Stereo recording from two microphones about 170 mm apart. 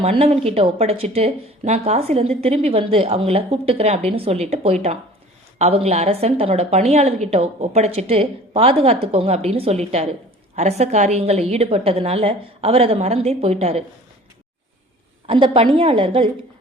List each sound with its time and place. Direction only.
0.0 s speech: 35° right (ahead or behind)
15.3 s speech: 30° right (ahead or behind)